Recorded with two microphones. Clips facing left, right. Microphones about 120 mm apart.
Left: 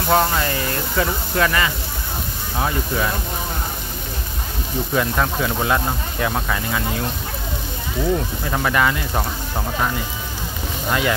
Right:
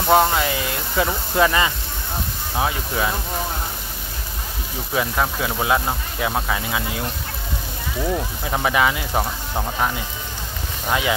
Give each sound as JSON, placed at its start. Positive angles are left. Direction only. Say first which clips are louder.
{"t": 0.1, "sound": "speech", "louder": "right 2 dB", "side_deg": -5}
{"t": 1.3, "sound": "speech", "louder": "right 2 dB", "side_deg": -20}
{"t": 2.5, "sound": "speech", "louder": "left 1 dB", "side_deg": -10}
{"t": 4.9, "sound": "speech", "louder": "left 1 dB", "side_deg": -5}
{"t": 8.5, "sound": "speech", "louder": "even", "side_deg": -10}
{"t": 10.9, "sound": "speech", "louder": "left 1 dB", "side_deg": -10}